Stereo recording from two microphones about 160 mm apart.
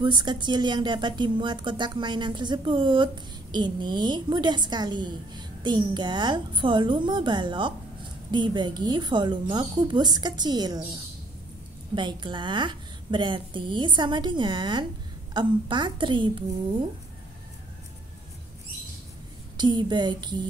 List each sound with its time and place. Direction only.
0.0 s a woman's voice: 30° right (ahead or behind)
11.9 s a woman's voice: 30° right (ahead or behind)
19.5 s a woman's voice: 30° right (ahead or behind)